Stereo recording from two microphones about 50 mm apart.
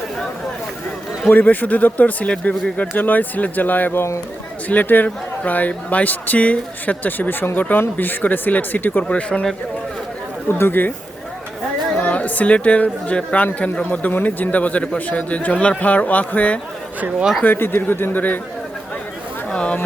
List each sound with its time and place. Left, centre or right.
1.3 s speech: left
3.0 s speech: left
9.0 s speech: left
10.5 s speech: left
11.9 s speech: left
17.4 s speech: left
19.5 s speech: left